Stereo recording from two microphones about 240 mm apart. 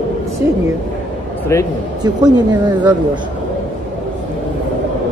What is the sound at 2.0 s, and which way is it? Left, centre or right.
Speech, centre.